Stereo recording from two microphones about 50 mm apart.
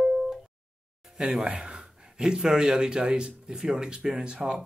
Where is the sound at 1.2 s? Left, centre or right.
Centre.